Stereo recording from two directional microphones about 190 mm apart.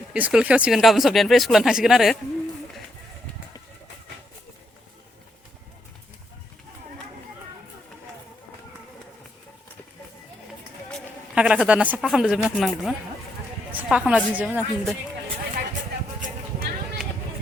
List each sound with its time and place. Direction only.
0.1 s speech: 5° right (ahead or behind)
10.9 s a woman's voice: 5° right (ahead or behind)
16.2 s a sound: 55° right (ahead or behind)